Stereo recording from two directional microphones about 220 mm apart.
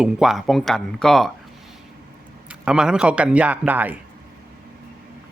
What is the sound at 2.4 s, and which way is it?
A man's voice, 5° right (ahead or behind).